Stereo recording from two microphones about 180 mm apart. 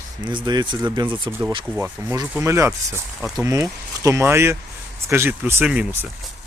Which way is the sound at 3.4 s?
15° right (ahead or behind).